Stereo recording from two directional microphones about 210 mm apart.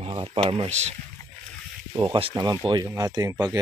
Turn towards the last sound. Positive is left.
turn(degrees=-15)  # may be behind; listen again after turning